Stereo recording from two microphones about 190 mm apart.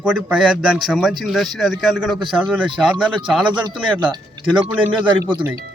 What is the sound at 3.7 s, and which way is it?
Speech, 20° right (ahead or behind).